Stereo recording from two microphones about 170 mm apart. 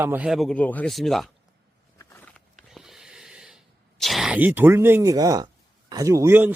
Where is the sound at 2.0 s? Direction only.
15° left (ahead or behind).